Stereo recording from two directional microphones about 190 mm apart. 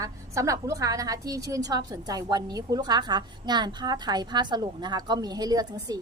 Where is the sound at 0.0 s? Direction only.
15° right (ahead or behind).